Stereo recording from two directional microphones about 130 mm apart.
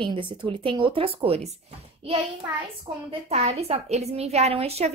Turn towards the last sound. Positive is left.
turn(degrees=-50)  # may be behind; listen again after turning